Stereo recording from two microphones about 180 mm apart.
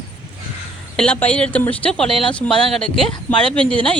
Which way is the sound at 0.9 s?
5° left (ahead or behind).